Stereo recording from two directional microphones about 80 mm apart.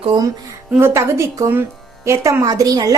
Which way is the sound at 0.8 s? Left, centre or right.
Right.